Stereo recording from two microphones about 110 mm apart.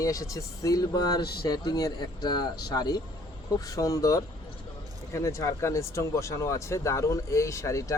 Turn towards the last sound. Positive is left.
turn(degrees=30)  # may be behind; listen again after turning